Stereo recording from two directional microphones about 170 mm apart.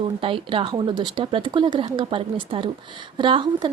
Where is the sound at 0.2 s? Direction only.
30° right (ahead or behind).